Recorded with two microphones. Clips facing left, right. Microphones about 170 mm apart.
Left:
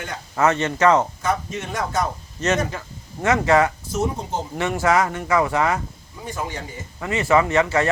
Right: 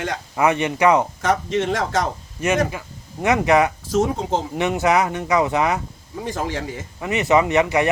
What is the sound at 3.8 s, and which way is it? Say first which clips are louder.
Speech: right 4 dB; 90° right.